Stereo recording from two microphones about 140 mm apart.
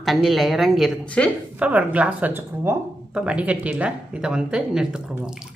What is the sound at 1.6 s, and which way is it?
A woman's voice, 10° right (ahead or behind).